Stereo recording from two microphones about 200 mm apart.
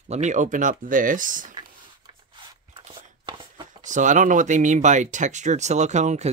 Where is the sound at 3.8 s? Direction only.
40° right (ahead or behind).